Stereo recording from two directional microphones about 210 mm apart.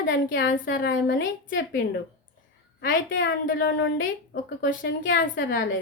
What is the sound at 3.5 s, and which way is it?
Speech, 60° left (ahead or behind).